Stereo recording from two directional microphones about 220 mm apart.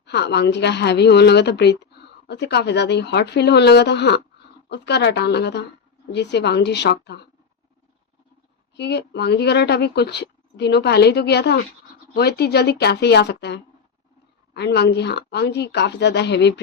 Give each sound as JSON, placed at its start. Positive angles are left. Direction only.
{"t": 0.0, "sound": "speech", "side_deg": 50}
{"t": 8.7, "sound": "speech", "side_deg": 50}